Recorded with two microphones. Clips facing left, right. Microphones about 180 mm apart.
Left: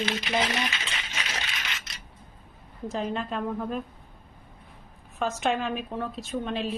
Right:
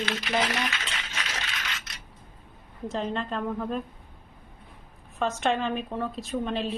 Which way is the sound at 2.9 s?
5° left (ahead or behind).